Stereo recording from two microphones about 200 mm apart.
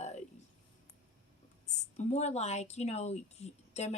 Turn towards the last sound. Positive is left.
turn(degrees=35)  # may be behind; listen again after turning